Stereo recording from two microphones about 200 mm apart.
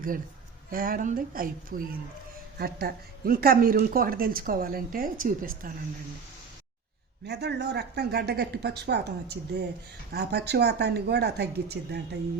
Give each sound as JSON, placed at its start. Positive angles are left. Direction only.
{"t": 0.7, "sound": "speech", "side_deg": -45}
{"t": 7.3, "sound": "a woman's voice", "side_deg": -60}